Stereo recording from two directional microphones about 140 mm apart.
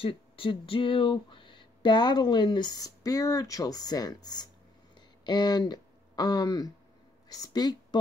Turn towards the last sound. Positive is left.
turn(degrees=30)  # may be behind; listen again after turning